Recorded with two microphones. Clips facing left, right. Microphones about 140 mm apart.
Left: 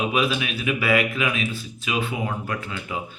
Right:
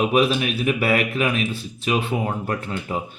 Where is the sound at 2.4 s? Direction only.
40° right (ahead or behind).